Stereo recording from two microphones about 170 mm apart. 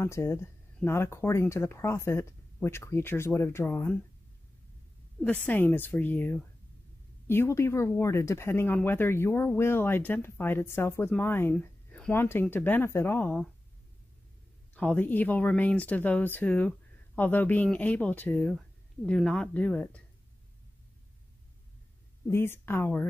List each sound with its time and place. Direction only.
0.0 s speech: 15° left (ahead or behind)
5.2 s speech: 10° left (ahead or behind)
14.7 s speech: 10° left (ahead or behind)
22.3 s speech: 15° left (ahead or behind)